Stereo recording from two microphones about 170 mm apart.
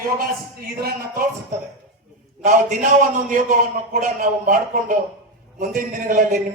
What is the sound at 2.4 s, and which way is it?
A man's voice, 45° right (ahead or behind).